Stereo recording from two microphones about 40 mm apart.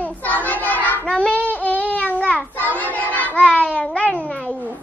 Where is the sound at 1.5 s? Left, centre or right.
Left.